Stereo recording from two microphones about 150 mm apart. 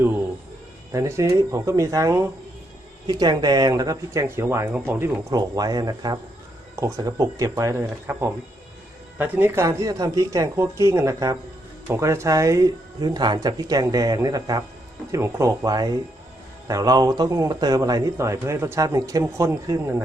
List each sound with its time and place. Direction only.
0.9 s speech: 20° right (ahead or behind)
9.6 s speech: 25° right (ahead or behind)